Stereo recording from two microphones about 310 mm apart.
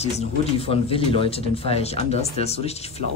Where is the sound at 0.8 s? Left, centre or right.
Centre.